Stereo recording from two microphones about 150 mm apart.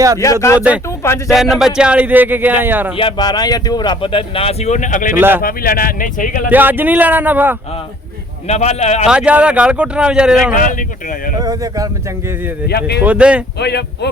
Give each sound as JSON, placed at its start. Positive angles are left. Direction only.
{"t": 0.2, "sound": "speech", "side_deg": 20}
{"t": 0.9, "sound": "a sound", "side_deg": 15}
{"t": 1.3, "sound": "speech", "side_deg": 0}
{"t": 2.9, "sound": "speech", "side_deg": 35}
{"t": 5.1, "sound": "speech", "side_deg": -15}
{"t": 5.4, "sound": "speech", "side_deg": 75}
{"t": 6.5, "sound": "speech", "side_deg": -10}
{"t": 8.4, "sound": "a man's voice", "side_deg": 45}
{"t": 9.0, "sound": "speech", "side_deg": -5}
{"t": 10.5, "sound": "speech", "side_deg": 65}
{"t": 11.3, "sound": "speech", "side_deg": -25}
{"t": 12.6, "sound": "speech", "side_deg": 90}
{"t": 13.0, "sound": "speech", "side_deg": -10}
{"t": 13.6, "sound": "speech", "side_deg": 90}